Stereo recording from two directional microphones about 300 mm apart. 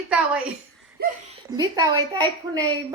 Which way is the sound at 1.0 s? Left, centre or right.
Right.